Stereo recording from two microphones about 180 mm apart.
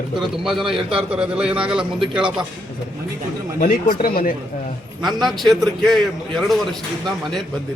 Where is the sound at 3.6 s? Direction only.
50° left (ahead or behind).